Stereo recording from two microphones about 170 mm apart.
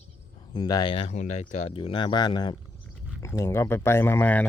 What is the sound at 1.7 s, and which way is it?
Speech, 30° left (ahead or behind).